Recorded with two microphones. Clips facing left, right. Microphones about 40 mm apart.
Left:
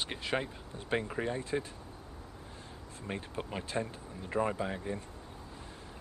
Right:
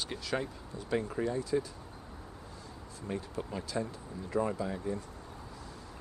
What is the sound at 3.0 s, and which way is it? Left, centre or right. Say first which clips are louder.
Speech: right 1 dB; left.